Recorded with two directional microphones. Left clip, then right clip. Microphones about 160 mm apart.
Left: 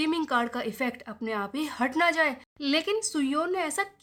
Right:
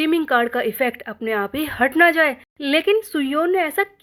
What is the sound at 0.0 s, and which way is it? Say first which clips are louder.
Speech: right 9 dB; 25° right (ahead or behind).